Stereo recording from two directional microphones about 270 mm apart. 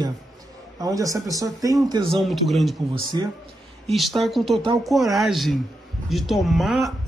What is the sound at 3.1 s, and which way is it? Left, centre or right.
Speech, centre.